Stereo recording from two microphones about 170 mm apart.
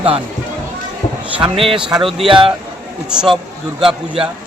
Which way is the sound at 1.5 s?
35° right (ahead or behind).